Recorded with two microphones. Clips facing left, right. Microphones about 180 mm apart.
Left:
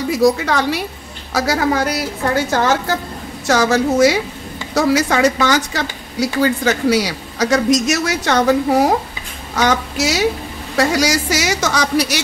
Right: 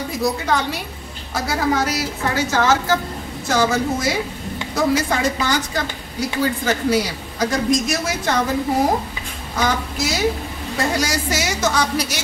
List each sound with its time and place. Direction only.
0.1 s a woman's voice: 85° left; by 2.7 s 55° left (ahead or behind)
3.4 s a woman's voice: 80° left